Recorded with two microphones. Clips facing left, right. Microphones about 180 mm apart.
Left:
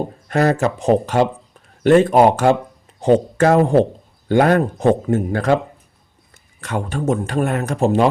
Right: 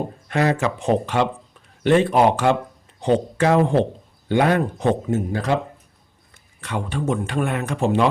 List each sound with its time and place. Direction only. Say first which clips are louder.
0.3 s speech: left 4 dB; 40° left (ahead or behind)
6.6 s speech: left 3 dB; 45° left (ahead or behind)